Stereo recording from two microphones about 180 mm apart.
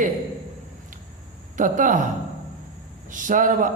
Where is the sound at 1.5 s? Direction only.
45° right (ahead or behind).